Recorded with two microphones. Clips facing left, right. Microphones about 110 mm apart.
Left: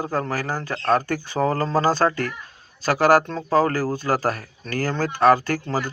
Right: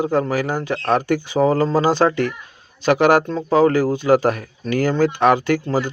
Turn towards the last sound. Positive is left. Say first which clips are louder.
# right 5 dB
turn(degrees=-15)  # may be behind; listen again after turning